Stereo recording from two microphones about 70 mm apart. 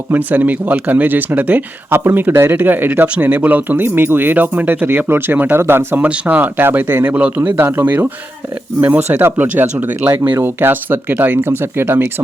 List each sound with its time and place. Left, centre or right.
0.1 s speech: right
6.0 s speech: right
7.5 s speech: right